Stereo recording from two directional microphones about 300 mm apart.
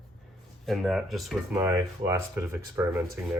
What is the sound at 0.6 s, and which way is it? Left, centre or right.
Speech, centre.